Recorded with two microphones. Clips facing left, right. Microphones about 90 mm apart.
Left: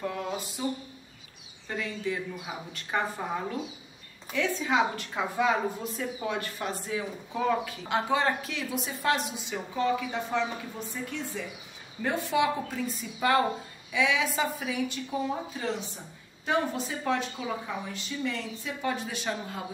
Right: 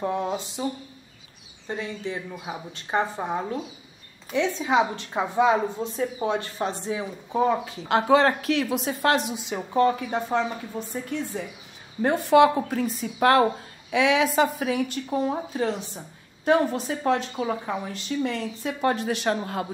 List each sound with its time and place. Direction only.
0.0 s a woman's voice: 25° right (ahead or behind)
1.7 s a woman's voice: 30° right (ahead or behind)
7.9 s speech: 70° right (ahead or behind); by 10.4 s 40° right (ahead or behind)
12.0 s speech: 50° right (ahead or behind)